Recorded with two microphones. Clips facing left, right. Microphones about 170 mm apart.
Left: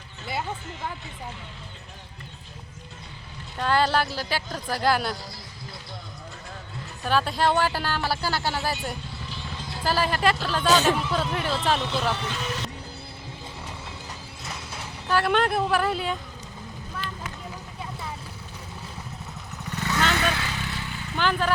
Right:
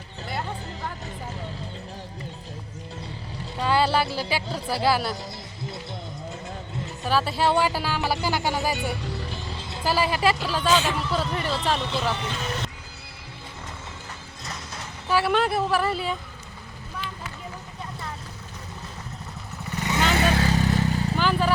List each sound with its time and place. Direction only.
3.6 s speech: 10° right (ahead or behind)
7.0 s speech: 5° right (ahead or behind)
9.6 s music: 25° right (ahead or behind)
9.8 s speech: 10° right (ahead or behind)
14.4 s a sound: 5° left (ahead or behind)
15.0 s speech: 5° right (ahead or behind)
19.6 s vehicle: 10° right (ahead or behind)
20.1 s vehicle: 35° right (ahead or behind)
21.2 s vehicle: 5° right (ahead or behind)